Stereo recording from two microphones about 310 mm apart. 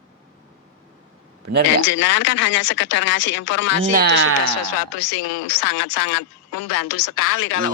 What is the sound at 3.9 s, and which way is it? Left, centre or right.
Speech, right.